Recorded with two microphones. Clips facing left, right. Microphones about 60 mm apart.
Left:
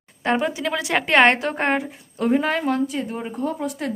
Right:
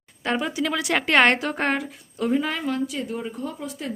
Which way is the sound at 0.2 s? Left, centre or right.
Left.